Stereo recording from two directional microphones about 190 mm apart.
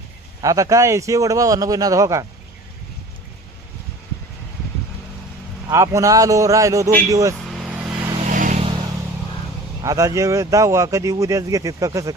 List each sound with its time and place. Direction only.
0.4 s speech: 15° right (ahead or behind)
5.6 s speech: 15° right (ahead or behind)
7.3 s vehicle: centre (ahead or behind)
8.3 s vehicle: 40° right (ahead or behind)
9.8 s speech: 15° right (ahead or behind)